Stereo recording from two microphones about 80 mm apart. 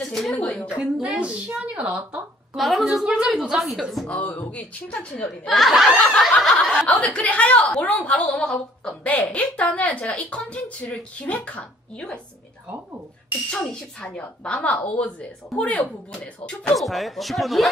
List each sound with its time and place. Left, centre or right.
0.0 s a woman's voice: centre
0.3 s a woman's voice: centre
0.8 s a woman's voice: centre
2.6 s speech: centre
4.1 s a woman's voice: centre
5.5 s a woman's voice: centre
13.5 s a woman's voice: centre
16.7 s speech: centre